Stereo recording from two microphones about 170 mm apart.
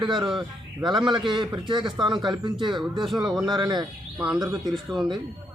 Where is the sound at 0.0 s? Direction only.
30° right (ahead or behind).